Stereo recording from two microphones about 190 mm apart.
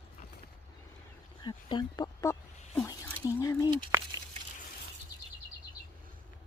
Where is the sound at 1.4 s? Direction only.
25° left (ahead or behind).